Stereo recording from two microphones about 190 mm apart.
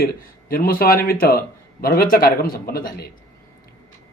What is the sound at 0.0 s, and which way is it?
Speech, 50° left (ahead or behind).